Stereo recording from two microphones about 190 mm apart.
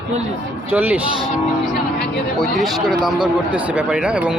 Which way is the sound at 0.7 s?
10° right (ahead or behind).